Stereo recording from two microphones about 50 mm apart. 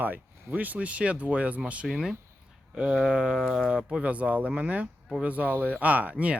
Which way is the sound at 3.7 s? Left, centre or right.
Right.